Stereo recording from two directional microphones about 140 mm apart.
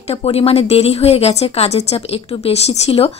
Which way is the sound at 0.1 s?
45° left (ahead or behind).